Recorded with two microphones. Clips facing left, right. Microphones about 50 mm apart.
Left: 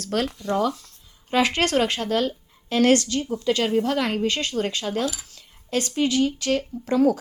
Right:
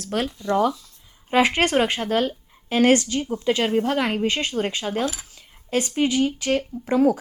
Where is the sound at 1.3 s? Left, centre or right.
Right.